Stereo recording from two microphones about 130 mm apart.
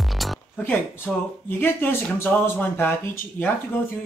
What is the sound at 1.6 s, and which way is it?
Speech, 15° left (ahead or behind).